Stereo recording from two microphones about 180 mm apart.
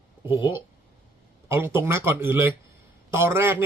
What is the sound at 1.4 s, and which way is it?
Speech, 15° right (ahead or behind).